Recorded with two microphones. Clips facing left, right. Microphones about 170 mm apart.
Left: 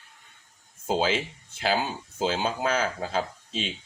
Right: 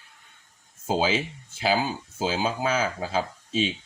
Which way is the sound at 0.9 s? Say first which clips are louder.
Right 1 dB; 5° right (ahead or behind).